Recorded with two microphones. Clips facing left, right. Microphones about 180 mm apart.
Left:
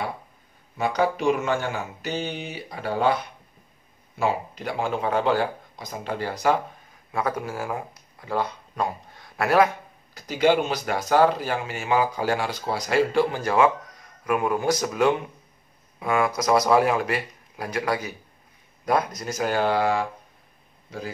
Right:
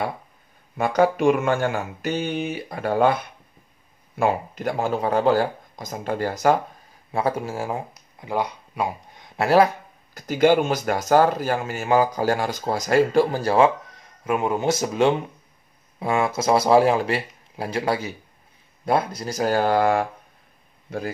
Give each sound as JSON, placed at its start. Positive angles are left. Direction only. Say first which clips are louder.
{"t": 0.7, "sound": "speech", "louder": "right 4 dB", "side_deg": -50}
{"t": 4.2, "sound": "speech", "louder": "right 3 dB", "side_deg": -50}
{"t": 7.1, "sound": "speech", "louder": "right 3 dB", "side_deg": -30}
{"t": 10.1, "sound": "a man's voice", "louder": "right 3 dB", "side_deg": -50}